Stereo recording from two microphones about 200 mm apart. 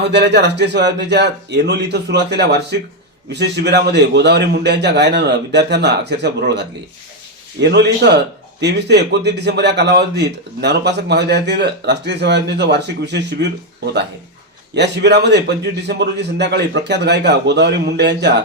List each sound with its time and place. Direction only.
0.0 s a man's voice: 60° right (ahead or behind)
14.8 s a man's voice: 60° right (ahead or behind)